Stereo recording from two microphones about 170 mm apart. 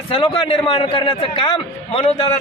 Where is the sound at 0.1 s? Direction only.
30° left (ahead or behind).